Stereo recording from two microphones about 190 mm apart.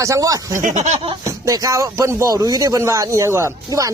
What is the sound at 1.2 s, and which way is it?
Speech, 15° right (ahead or behind).